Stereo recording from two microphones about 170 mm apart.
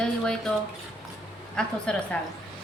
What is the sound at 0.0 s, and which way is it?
Speech, 5° left (ahead or behind).